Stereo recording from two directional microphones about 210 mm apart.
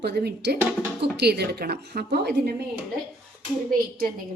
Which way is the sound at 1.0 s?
50° right (ahead or behind).